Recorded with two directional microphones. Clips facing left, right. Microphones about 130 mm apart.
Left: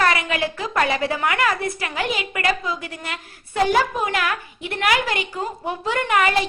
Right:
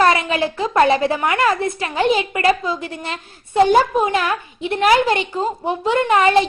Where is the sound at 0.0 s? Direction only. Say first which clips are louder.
Right 5 dB; 25° right (ahead or behind).